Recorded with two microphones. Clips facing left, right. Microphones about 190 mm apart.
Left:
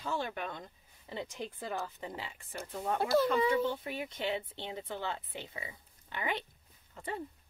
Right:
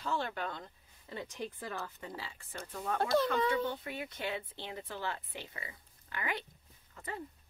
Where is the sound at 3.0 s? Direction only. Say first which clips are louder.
Left 1 dB; 5° left (ahead or behind).